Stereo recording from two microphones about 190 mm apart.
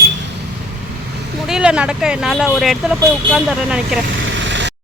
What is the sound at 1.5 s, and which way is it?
Speech, 5° right (ahead or behind).